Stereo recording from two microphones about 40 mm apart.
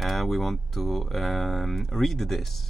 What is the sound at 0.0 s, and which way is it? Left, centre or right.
Speech, centre.